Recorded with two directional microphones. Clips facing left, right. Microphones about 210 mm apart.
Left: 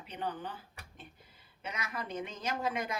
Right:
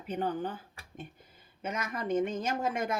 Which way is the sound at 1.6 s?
50° right (ahead or behind).